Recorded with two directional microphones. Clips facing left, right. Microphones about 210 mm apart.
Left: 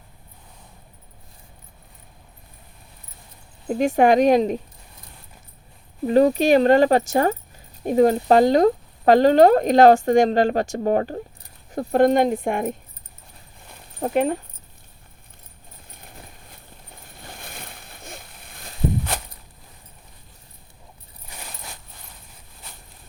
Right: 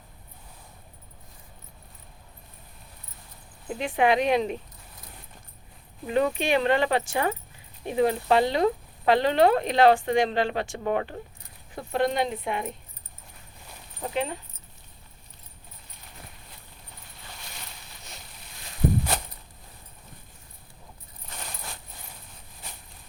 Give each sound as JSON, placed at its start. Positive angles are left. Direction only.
{"t": 3.7, "sound": "speech", "side_deg": 45}
{"t": 6.1, "sound": "speech", "side_deg": 40}
{"t": 14.0, "sound": "speech", "side_deg": 50}
{"t": 17.2, "sound": "boat", "side_deg": 50}